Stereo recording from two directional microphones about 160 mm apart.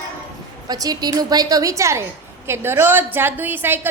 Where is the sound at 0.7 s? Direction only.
25° right (ahead or behind).